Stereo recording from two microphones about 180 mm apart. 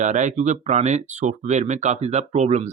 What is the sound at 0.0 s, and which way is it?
Speech, 40° right (ahead or behind).